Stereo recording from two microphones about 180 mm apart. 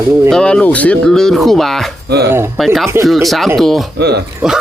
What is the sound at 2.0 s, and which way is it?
Speech, 65° right (ahead or behind).